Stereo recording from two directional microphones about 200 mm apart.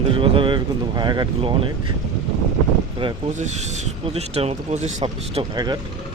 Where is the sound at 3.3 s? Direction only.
35° right (ahead or behind).